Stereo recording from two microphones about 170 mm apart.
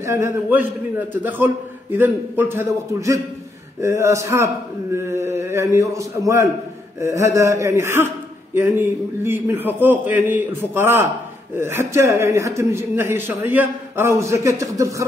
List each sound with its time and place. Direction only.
0.0 s speech: 15° right (ahead or behind)